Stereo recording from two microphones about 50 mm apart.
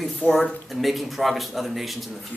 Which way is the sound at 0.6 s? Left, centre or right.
Centre.